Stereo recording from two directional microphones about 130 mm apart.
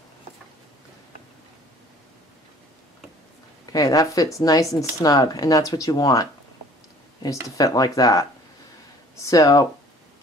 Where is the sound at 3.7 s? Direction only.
25° left (ahead or behind).